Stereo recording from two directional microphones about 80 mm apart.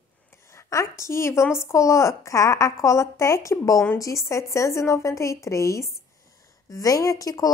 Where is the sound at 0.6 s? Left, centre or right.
Left.